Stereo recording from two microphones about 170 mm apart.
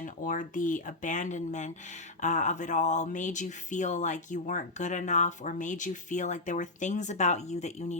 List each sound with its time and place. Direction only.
0.0 s speech: 50° left (ahead or behind)